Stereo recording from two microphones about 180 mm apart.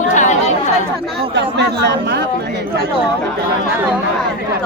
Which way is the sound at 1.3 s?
70° right (ahead or behind).